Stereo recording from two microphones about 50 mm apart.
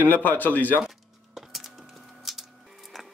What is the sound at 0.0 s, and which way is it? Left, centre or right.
Speech, left.